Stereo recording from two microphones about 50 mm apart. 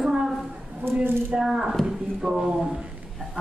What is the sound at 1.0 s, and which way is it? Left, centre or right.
Speech, right.